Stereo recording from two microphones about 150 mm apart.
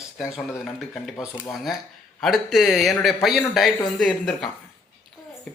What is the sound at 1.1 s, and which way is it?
Speech, 20° left (ahead or behind).